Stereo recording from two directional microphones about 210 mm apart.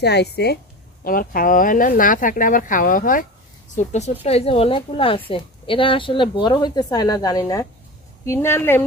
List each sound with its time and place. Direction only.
0.0 s a woman's voice: 50° left (ahead or behind); by 8.8 s 10° left (ahead or behind)